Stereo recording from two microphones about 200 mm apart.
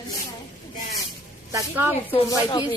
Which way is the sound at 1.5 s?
10° right (ahead or behind).